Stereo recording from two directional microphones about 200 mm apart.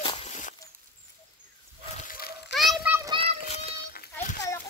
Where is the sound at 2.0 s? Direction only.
50° left (ahead or behind).